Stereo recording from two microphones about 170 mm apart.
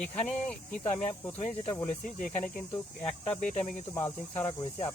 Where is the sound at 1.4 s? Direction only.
35° left (ahead or behind).